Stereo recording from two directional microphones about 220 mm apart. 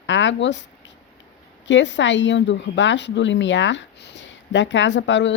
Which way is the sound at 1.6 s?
55° left (ahead or behind).